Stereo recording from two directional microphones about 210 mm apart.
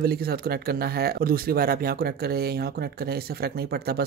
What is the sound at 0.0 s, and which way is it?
Speech, 45° right (ahead or behind).